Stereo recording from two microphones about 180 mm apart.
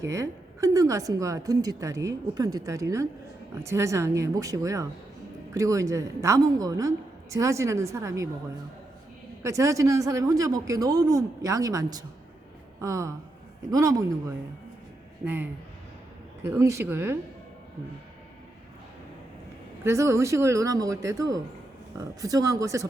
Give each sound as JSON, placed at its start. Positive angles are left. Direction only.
{"t": 0.0, "sound": "a woman's voice", "side_deg": -15}
{"t": 9.4, "sound": "a man's voice", "side_deg": -15}
{"t": 19.8, "sound": "a woman's voice", "side_deg": -15}